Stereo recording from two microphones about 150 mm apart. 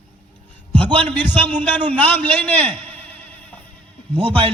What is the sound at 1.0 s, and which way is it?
A man's voice, 10° left (ahead or behind).